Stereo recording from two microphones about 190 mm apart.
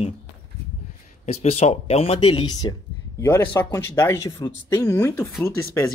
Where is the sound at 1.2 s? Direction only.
35° left (ahead or behind).